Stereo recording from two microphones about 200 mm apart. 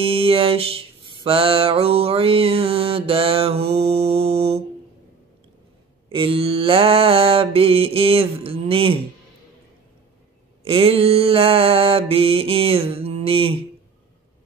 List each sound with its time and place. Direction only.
0.0 s mantra: 25° right (ahead or behind)
6.0 s mantra: 25° right (ahead or behind)
10.6 s mantra: 30° right (ahead or behind)